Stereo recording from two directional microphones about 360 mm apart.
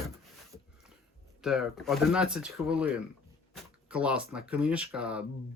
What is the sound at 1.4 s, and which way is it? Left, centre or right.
Speech, centre.